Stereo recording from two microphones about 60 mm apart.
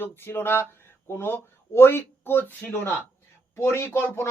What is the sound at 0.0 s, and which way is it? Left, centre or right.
Speech, left.